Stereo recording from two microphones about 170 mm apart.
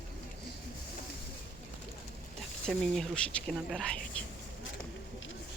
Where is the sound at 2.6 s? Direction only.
5° left (ahead or behind).